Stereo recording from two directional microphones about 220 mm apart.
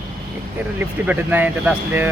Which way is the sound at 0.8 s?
10° right (ahead or behind).